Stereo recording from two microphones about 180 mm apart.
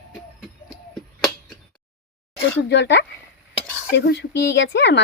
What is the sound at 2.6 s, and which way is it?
Speech, 75° left (ahead or behind).